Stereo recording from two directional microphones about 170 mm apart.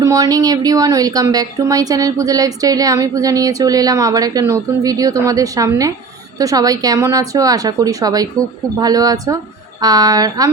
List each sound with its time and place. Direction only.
0.0 s speech: 20° right (ahead or behind)